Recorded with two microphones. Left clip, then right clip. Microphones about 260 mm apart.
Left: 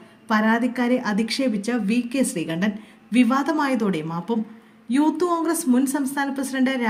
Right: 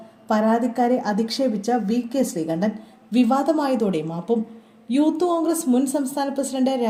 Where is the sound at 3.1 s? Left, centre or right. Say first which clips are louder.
Right 1 dB; centre.